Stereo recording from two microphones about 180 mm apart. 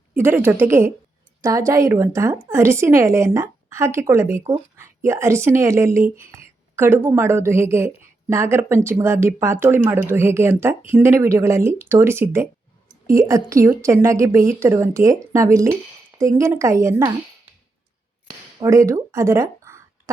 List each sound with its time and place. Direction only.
0.1 s a woman's voice: 10° right (ahead or behind)
18.6 s speech: 15° right (ahead or behind)